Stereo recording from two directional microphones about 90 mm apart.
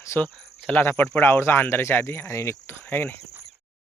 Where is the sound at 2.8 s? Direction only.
20° left (ahead or behind).